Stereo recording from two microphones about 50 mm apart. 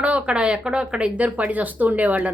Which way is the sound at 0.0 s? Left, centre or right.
Right.